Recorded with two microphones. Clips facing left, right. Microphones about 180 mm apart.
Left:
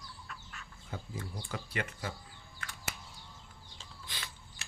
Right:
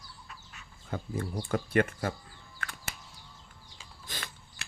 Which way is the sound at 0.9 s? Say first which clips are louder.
Right 8 dB; 60° right (ahead or behind).